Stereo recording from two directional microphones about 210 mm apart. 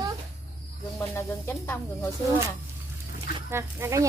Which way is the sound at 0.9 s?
10° left (ahead or behind).